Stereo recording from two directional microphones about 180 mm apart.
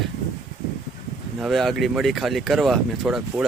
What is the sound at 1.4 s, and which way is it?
Speech, centre (ahead or behind).